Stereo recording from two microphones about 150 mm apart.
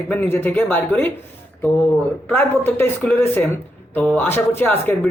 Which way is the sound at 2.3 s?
15° left (ahead or behind).